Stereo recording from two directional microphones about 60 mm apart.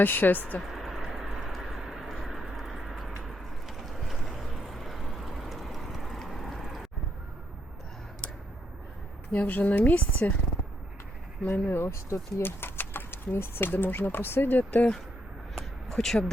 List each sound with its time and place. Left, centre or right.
0.0 s speech: left
0.6 s a sound: centre
3.2 s vehicle: centre
9.3 s speech: left
11.5 s speech: left
11.8 s speech: left
15.5 s a sound: centre